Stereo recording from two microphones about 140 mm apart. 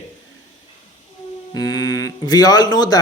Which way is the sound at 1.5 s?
30° left (ahead or behind).